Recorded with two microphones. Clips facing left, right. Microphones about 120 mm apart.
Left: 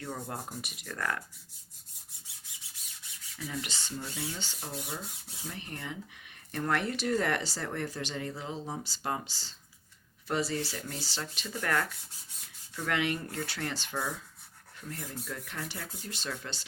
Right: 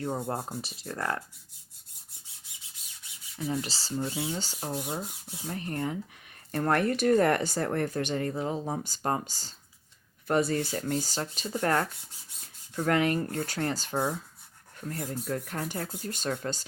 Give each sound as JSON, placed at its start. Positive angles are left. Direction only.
{"t": 0.0, "sound": "speech", "side_deg": -35}
{"t": 3.3, "sound": "speech", "side_deg": -30}